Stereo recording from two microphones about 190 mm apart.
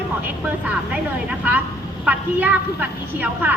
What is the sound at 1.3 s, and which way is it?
A woman's voice, 10° right (ahead or behind).